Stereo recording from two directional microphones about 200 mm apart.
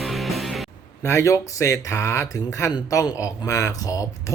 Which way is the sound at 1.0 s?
15° left (ahead or behind).